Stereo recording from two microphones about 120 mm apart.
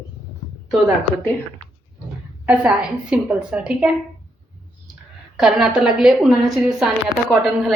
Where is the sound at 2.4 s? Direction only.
10° right (ahead or behind).